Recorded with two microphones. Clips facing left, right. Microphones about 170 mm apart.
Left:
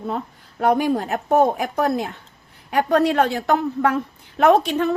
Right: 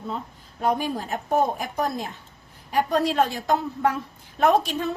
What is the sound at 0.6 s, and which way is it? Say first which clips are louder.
A woman's voice: left 6 dB; 70° left (ahead or behind).